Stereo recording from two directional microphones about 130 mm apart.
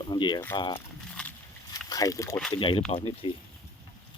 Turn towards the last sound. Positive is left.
turn(degrees=45)  # may be behind; listen again after turning